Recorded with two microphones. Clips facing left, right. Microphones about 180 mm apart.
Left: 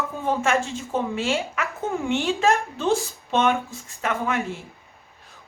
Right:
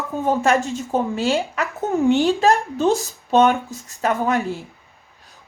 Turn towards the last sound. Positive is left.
turn(degrees=-35)  # may be behind; listen again after turning